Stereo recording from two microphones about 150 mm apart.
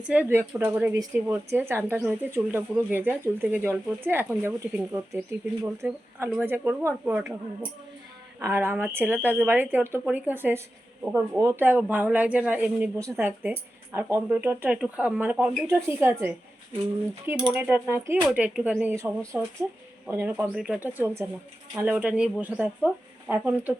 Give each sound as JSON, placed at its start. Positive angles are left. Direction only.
{"t": 0.0, "sound": "speech", "side_deg": -10}
{"t": 8.4, "sound": "speech", "side_deg": -15}